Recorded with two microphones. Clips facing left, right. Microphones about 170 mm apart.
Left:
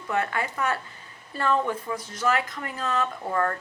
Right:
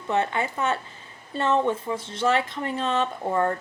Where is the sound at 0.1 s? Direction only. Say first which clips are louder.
Right 3 dB; 25° right (ahead or behind).